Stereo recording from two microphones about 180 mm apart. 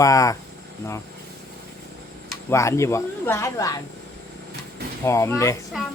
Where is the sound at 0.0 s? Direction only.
20° left (ahead or behind).